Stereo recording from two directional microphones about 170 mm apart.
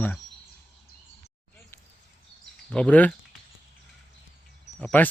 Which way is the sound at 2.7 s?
5° left (ahead or behind).